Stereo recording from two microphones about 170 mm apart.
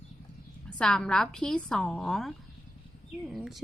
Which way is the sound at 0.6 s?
5° left (ahead or behind).